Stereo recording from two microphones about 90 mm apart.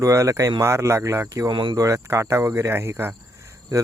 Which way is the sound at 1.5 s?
60° right (ahead or behind).